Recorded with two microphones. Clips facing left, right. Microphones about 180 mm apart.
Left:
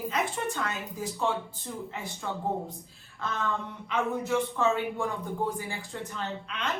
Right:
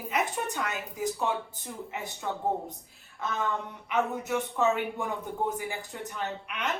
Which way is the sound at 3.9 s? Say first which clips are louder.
Left 1 dB; 20° right (ahead or behind).